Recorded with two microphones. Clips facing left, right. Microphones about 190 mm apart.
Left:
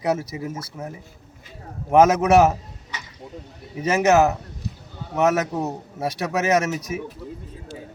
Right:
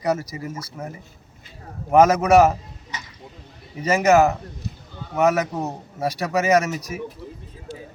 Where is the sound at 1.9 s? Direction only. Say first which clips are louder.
Even; 5° left (ahead or behind).